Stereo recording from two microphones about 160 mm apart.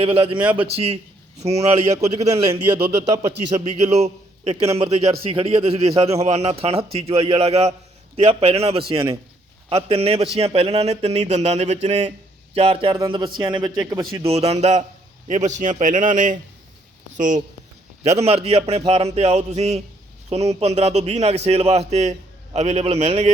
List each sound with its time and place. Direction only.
0.0 s a man's voice: 35° right (ahead or behind)
2.7 s speech: 85° right
3.6 s a man's voice: 45° right (ahead or behind)
18.0 s a man's voice: 40° right (ahead or behind)